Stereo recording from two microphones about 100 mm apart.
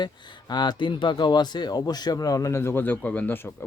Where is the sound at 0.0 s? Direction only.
45° left (ahead or behind).